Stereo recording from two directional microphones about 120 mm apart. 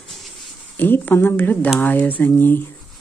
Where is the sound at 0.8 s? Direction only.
15° left (ahead or behind).